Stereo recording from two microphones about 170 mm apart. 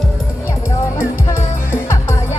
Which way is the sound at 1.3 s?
15° left (ahead or behind).